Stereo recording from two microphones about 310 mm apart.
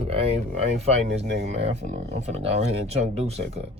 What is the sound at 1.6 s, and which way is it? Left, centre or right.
Speech, right.